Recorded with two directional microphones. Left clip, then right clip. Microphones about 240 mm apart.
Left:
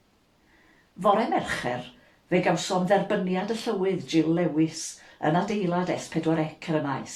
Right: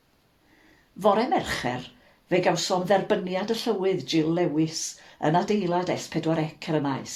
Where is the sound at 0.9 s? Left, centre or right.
Right.